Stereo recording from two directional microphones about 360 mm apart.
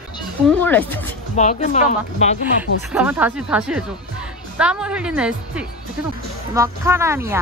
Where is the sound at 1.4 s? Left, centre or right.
Centre.